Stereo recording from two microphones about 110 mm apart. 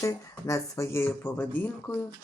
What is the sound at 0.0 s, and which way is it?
Speech, 30° left (ahead or behind).